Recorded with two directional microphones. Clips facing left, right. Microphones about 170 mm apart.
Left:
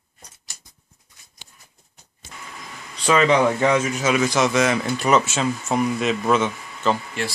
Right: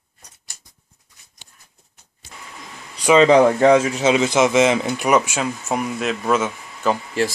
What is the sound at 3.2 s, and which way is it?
Speech, 30° right (ahead or behind).